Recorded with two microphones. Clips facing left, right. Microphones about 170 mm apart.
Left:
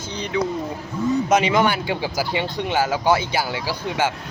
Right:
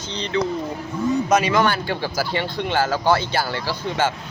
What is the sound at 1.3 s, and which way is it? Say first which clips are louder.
Speech: even; 20° left (ahead or behind).